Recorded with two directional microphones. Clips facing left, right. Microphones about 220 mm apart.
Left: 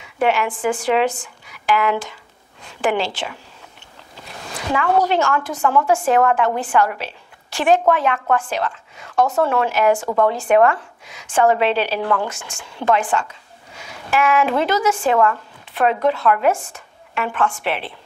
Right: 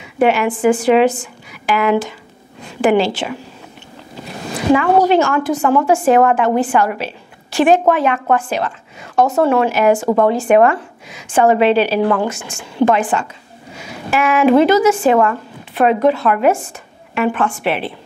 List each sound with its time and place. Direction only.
0.0 s a woman's voice: 10° right (ahead or behind)
5.6 s a woman's voice: 15° right (ahead or behind)
10.0 s a woman's voice: 20° right (ahead or behind)